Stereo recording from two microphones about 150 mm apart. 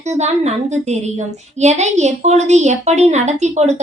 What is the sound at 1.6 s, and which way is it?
A woman's voice, 50° right (ahead or behind).